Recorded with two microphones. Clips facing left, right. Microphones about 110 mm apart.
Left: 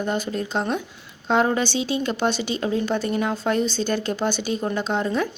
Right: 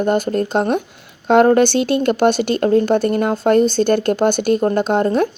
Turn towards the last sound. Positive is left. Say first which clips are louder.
# right 8 dB
turn(degrees=-55)  # may be behind; listen again after turning